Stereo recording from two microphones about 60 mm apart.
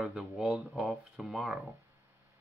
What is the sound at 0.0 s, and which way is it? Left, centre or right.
Speech, centre.